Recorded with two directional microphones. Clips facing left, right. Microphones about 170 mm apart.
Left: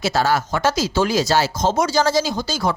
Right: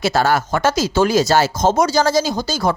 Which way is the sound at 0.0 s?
55° right (ahead or behind).